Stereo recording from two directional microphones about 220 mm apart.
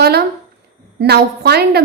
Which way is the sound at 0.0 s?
45° right (ahead or behind).